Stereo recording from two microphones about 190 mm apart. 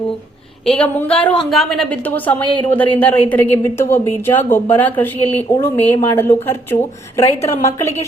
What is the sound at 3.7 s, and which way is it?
A woman's voice, 15° left (ahead or behind).